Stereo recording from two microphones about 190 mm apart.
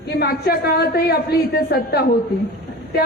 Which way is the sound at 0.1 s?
60° left (ahead or behind).